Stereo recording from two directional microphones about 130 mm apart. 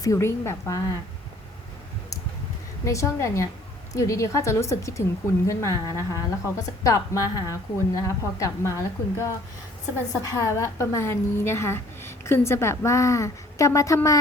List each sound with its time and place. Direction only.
0.0 s a woman's voice: 20° left (ahead or behind)
2.8 s a woman's voice: 25° left (ahead or behind)